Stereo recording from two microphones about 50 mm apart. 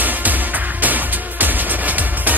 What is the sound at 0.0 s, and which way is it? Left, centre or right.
Music, right.